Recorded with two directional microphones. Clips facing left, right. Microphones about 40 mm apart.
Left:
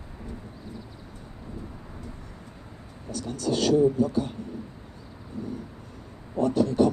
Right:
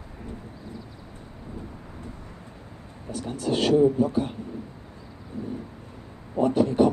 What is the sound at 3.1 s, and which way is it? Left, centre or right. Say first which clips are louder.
Speech: right 1 dB; right.